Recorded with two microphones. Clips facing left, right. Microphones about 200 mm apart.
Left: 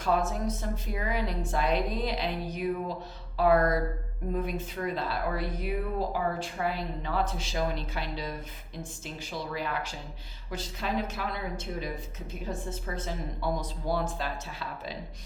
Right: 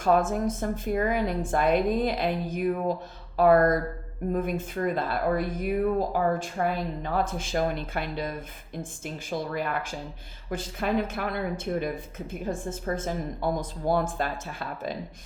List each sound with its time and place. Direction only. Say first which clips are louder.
0.0 s speech: right 5 dB; 50° right (ahead or behind)